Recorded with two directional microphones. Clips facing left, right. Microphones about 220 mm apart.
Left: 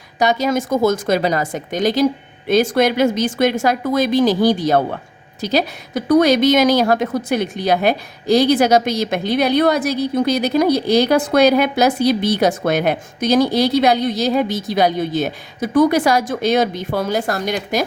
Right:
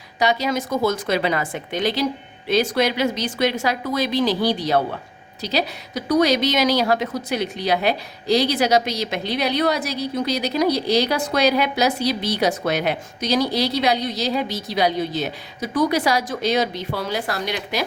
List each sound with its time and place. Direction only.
0.2 s a woman's voice: 45° left (ahead or behind)